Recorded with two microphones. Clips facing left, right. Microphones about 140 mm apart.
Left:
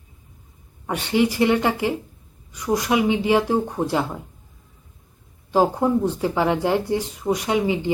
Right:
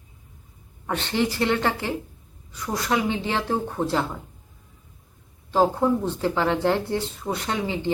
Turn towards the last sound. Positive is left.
turn(degrees=15)  # may be behind; listen again after turning